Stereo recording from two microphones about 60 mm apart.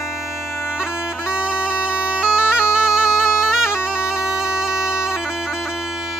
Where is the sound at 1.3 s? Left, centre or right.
Centre.